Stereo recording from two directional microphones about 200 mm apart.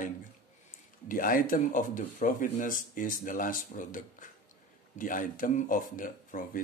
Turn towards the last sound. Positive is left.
turn(degrees=45)  # may be behind; listen again after turning